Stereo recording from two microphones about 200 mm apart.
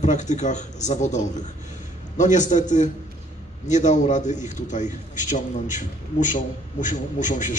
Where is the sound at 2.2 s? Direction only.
35° left (ahead or behind).